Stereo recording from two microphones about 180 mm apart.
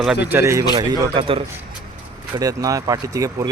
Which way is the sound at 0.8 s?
30° right (ahead or behind).